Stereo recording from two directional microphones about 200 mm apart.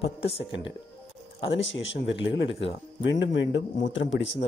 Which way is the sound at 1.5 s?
65° left (ahead or behind).